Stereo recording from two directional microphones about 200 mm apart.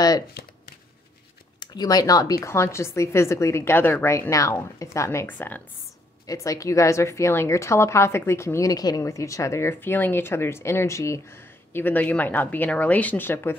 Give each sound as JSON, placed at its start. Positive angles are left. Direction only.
{"t": 1.6, "sound": "a woman's voice", "side_deg": 20}